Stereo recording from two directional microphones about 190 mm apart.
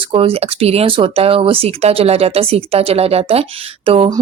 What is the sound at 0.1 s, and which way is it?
Speech, 30° right (ahead or behind).